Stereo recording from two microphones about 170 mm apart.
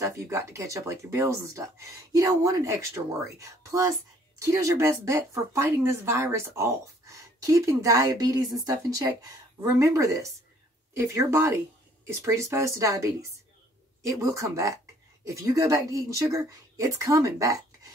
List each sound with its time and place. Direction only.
0.0 s speech: 15° right (ahead or behind)